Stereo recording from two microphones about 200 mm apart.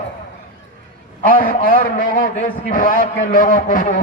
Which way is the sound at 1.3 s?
45° left (ahead or behind).